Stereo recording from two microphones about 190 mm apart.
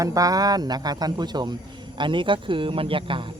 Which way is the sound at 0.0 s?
20° right (ahead or behind).